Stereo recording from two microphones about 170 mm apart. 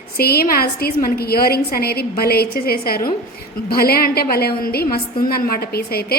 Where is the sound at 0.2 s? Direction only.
65° left (ahead or behind).